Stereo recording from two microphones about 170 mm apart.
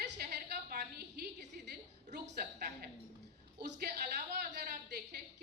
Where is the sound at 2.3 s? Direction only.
65° right (ahead or behind).